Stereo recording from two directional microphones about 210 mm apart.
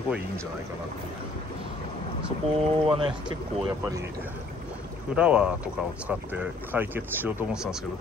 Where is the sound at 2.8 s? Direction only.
25° right (ahead or behind).